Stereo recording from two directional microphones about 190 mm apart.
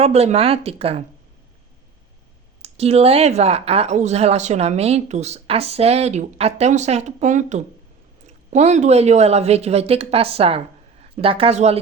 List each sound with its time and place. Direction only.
0.0 s speech: 35° right (ahead or behind)
2.6 s speech: 30° right (ahead or behind)